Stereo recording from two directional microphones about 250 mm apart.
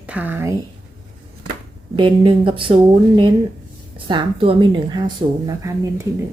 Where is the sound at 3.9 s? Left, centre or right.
Centre.